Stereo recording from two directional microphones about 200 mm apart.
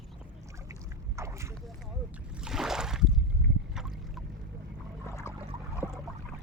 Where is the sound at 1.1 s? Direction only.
15° right (ahead or behind).